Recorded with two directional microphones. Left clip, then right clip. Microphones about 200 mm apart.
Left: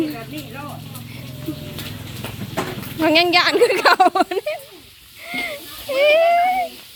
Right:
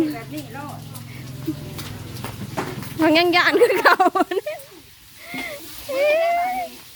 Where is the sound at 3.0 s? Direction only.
20° right (ahead or behind).